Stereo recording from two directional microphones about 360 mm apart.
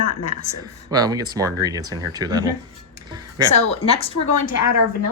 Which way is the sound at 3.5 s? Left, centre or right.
Centre.